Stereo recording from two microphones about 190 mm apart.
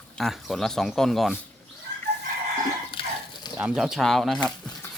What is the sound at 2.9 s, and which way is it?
Dog, 25° left (ahead or behind).